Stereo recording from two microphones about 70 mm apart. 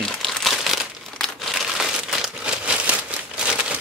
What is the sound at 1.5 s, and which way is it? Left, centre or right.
Crumpling, centre.